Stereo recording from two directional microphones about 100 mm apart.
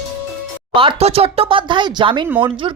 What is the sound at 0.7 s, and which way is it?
A woman's voice, 60° right (ahead or behind).